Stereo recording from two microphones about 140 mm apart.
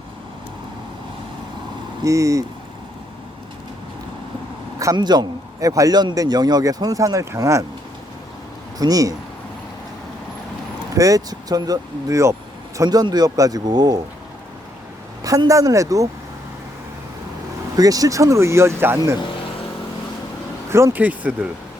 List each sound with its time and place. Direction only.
2.0 s speech: 20° right (ahead or behind)
4.8 s speech: 25° right (ahead or behind)
8.8 s speech: 25° right (ahead or behind)
10.9 s speech: 25° right (ahead or behind)
15.2 s speech: 25° right (ahead or behind)
17.7 s speech: 25° right (ahead or behind)
20.7 s speech: 20° right (ahead or behind)